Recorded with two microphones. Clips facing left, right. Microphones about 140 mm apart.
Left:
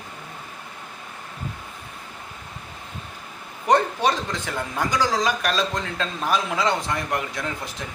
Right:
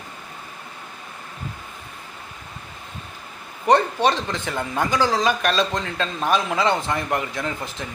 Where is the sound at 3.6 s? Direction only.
5° left (ahead or behind).